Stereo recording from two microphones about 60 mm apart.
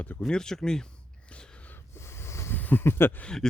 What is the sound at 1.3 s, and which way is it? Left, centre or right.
Gasp, left.